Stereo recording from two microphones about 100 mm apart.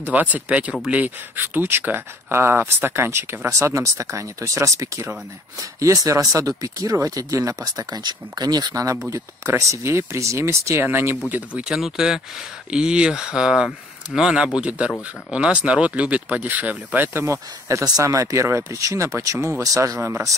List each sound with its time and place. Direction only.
0.0 s speech: 15° right (ahead or behind)
11.7 s speech: 5° right (ahead or behind); by 20.3 s 25° right (ahead or behind)